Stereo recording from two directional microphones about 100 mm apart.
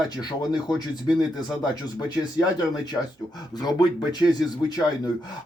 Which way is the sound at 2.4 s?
45° left (ahead or behind).